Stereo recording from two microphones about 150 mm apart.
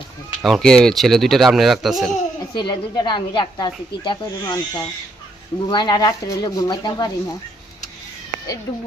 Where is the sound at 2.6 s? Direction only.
30° left (ahead or behind).